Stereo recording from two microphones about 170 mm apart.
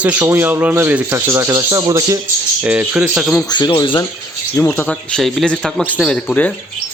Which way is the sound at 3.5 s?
25° left (ahead or behind).